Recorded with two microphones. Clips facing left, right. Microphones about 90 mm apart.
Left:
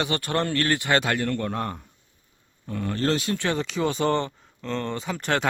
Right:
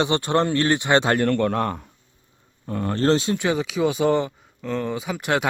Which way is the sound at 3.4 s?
5° right (ahead or behind).